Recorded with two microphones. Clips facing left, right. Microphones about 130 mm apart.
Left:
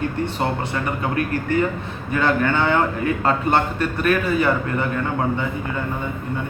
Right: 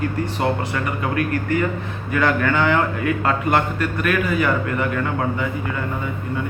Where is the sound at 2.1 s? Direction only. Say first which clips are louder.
Even; 25° left (ahead or behind).